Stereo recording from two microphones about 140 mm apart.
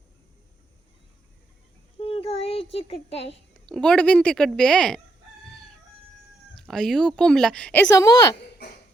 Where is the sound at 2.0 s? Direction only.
40° left (ahead or behind).